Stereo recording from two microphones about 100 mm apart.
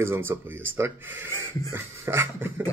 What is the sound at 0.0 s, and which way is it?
Speech, 25° right (ahead or behind).